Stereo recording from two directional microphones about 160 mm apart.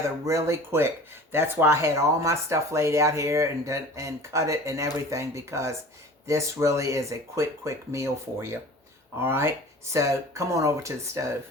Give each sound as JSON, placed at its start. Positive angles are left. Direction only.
{"t": 0.0, "sound": "speech", "side_deg": -20}